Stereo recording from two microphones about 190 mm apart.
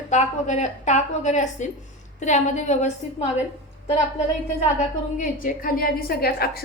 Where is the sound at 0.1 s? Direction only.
40° left (ahead or behind).